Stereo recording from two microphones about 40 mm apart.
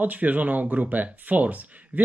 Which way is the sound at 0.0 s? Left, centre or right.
Right.